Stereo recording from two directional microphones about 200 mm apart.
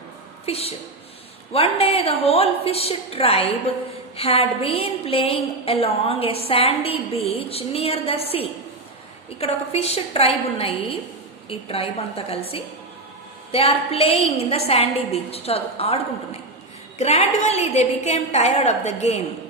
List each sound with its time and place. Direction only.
0.4 s a woman's voice: 30° left (ahead or behind)